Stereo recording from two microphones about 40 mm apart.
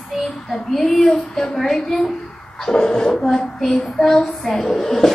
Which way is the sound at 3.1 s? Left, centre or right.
Centre.